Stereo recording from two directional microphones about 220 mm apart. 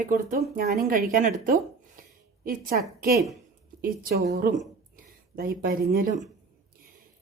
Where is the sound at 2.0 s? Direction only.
40° right (ahead or behind).